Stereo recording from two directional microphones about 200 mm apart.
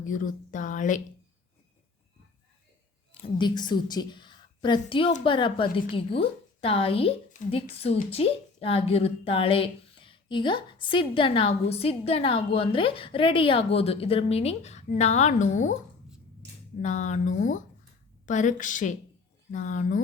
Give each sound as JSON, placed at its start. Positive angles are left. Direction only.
{"t": 0.0, "sound": "speech", "side_deg": 40}
{"t": 3.2, "sound": "a woman's voice", "side_deg": 20}
{"t": 16.8, "sound": "speech", "side_deg": 35}